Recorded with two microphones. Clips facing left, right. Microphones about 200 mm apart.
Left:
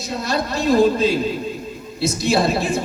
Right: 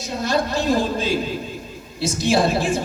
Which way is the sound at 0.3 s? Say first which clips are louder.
Left 1 dB; 45° right (ahead or behind).